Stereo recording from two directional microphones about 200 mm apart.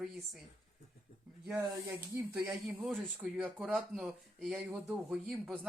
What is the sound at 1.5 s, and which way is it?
Speech, 15° right (ahead or behind).